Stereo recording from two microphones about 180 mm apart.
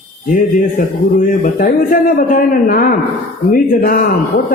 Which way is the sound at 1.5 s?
55° left (ahead or behind).